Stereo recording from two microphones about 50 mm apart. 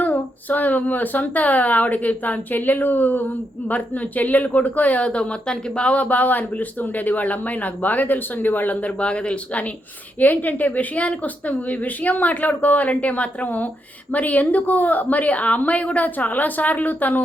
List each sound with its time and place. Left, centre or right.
0.0 s speech: left
10.2 s speech: left